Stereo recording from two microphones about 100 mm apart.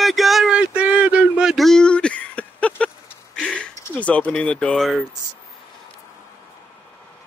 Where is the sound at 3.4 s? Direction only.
10° left (ahead or behind).